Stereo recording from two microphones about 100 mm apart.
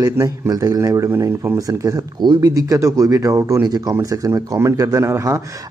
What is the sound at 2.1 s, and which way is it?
A man's voice, 45° right (ahead or behind).